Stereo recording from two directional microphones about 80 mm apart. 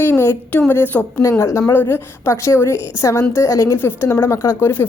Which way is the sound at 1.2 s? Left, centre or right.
Left.